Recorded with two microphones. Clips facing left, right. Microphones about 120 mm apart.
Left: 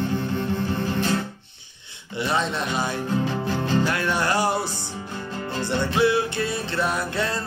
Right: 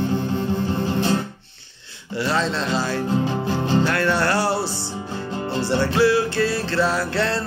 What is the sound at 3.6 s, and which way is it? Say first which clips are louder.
Music: right 3 dB; 25° right (ahead or behind).